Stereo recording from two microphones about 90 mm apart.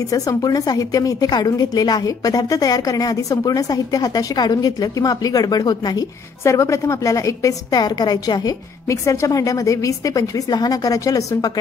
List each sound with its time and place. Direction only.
0.0 s a woman's voice: 40° left (ahead or behind)
6.4 s a woman's voice: 35° left (ahead or behind)